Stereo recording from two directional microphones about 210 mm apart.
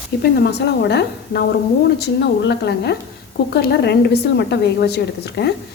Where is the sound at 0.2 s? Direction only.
55° left (ahead or behind).